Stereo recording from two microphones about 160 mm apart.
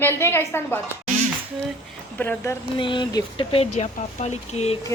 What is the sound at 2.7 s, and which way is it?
Speech, 30° left (ahead or behind).